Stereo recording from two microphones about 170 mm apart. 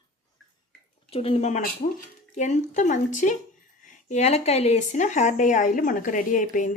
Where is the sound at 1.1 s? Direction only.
35° left (ahead or behind).